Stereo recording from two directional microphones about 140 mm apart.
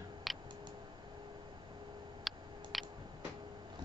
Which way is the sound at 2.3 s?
Centre (ahead or behind).